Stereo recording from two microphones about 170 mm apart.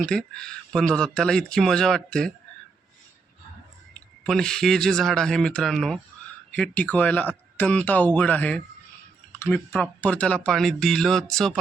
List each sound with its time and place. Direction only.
0.0 s speech: 5° left (ahead or behind)
4.2 s speech: 5° left (ahead or behind)